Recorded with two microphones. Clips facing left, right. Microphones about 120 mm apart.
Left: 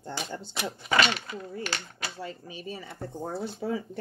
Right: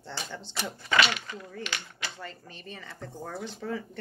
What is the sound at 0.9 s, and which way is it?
Speech, 40° left (ahead or behind).